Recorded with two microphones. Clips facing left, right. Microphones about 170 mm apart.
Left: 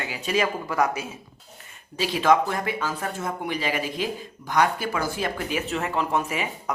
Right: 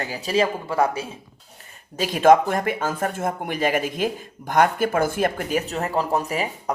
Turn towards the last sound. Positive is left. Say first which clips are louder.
# right 3 dB
turn(degrees=-35)  # may be behind; listen again after turning